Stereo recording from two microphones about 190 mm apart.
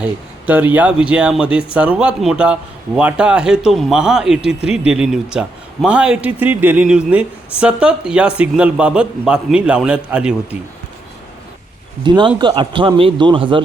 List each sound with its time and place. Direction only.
0.0 s a man's voice: 10° right (ahead or behind)
12.0 s a man's voice: 25° right (ahead or behind)